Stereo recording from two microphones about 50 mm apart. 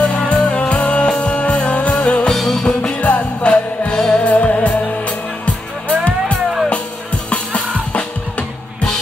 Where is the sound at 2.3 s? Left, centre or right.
Centre.